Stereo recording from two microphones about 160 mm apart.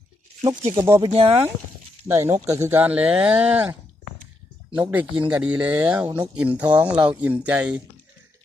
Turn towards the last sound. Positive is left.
turn(degrees=-10)  # may be behind; listen again after turning